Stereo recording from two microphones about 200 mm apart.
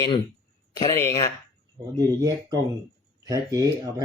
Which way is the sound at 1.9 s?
15° right (ahead or behind).